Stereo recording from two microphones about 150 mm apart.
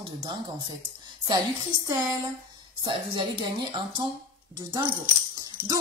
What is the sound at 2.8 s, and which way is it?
A woman's voice, 35° right (ahead or behind).